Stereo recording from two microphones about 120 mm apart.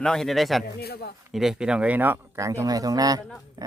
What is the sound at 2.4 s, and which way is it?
Speech, 25° right (ahead or behind).